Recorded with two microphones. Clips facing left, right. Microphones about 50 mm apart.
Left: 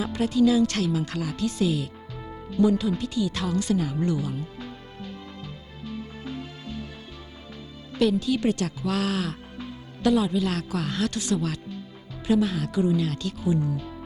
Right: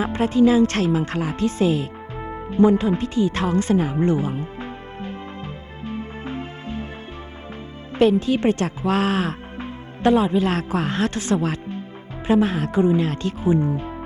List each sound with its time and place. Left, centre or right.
0.0 s speech: right
5.8 s music: right
7.9 s speech: right